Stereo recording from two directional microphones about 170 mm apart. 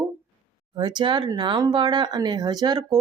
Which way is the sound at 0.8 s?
25° right (ahead or behind).